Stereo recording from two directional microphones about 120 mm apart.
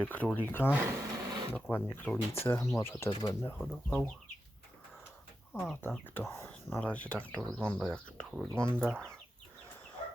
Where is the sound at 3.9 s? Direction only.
10° left (ahead or behind).